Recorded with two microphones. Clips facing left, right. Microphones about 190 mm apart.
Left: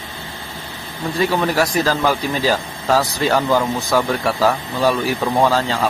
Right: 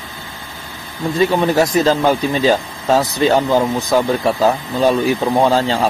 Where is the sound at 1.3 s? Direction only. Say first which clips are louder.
Right 4 dB; 20° right (ahead or behind).